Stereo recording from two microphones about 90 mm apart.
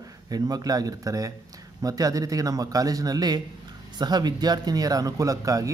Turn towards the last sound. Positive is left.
turn(degrees=-40)  # may be behind; listen again after turning